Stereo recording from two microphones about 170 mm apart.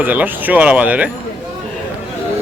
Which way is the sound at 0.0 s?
10° right (ahead or behind).